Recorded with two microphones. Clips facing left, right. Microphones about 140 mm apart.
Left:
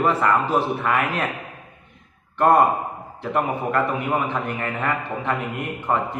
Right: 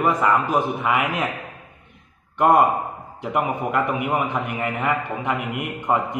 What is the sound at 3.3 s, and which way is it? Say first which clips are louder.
A man's voice: even; 15° right (ahead or behind).